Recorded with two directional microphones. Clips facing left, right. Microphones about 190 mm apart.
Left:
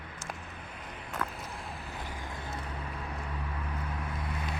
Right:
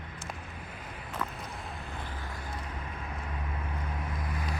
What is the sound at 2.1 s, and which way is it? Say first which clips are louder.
Vehicle: left 1 dB; 15° left (ahead or behind).